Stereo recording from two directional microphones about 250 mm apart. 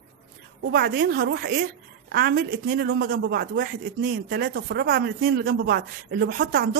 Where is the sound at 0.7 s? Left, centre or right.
Right.